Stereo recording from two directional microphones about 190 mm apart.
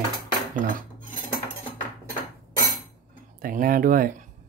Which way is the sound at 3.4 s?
50° right (ahead or behind).